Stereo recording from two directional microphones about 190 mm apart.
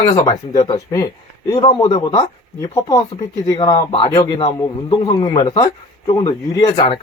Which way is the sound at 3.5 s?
20° left (ahead or behind).